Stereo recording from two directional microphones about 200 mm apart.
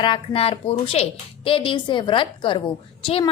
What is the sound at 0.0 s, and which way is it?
A woman's voice, 25° left (ahead or behind).